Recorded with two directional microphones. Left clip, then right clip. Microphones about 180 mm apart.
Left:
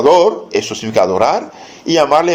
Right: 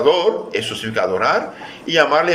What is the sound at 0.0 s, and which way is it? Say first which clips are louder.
A man's voice: left 6 dB; 20° left (ahead or behind).